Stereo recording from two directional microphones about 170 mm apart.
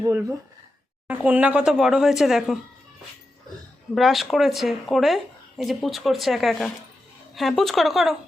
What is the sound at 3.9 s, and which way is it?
A woman's voice, centre (ahead or behind).